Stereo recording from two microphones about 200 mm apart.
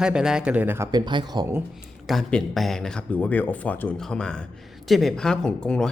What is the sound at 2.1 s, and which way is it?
Speech, centre (ahead or behind).